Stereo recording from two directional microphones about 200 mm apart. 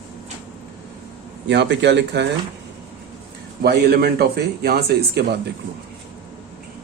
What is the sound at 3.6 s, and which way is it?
Speech, 50° right (ahead or behind).